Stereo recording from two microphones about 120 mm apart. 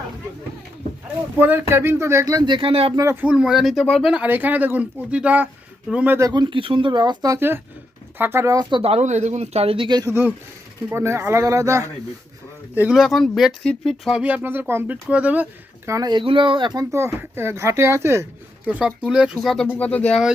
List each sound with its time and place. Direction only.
1.4 s speech: 15° right (ahead or behind); by 2.9 s 50° right (ahead or behind)
2.9 s speech: 30° right (ahead or behind)
3.2 s speech: 10° right (ahead or behind)
4.1 s speech: 15° right (ahead or behind)
6.1 s speech: 35° right (ahead or behind)
7.3 s speech: 20° right (ahead or behind)
8.7 s speech: 55° right (ahead or behind)
10.0 s speech: 20° right (ahead or behind)
12.7 s speech: 15° right (ahead or behind)
13.0 s speech: centre (ahead or behind)
15.9 s speech: 35° right (ahead or behind)
16.9 s speech: 20° right (ahead or behind); by 19.6 s centre (ahead or behind)
19.6 s speech: 15° left (ahead or behind)